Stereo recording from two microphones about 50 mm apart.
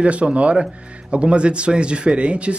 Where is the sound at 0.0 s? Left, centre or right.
Right.